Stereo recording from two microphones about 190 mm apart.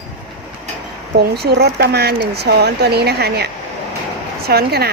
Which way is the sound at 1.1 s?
60° right (ahead or behind).